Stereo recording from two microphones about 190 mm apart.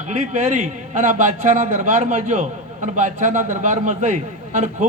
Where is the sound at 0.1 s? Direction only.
40° right (ahead or behind).